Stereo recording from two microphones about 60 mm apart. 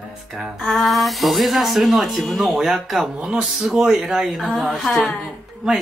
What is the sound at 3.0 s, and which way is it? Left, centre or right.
Speech, centre.